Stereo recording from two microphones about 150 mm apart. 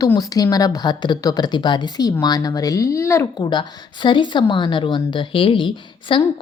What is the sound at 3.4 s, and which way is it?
A woman's voice, 30° left (ahead or behind).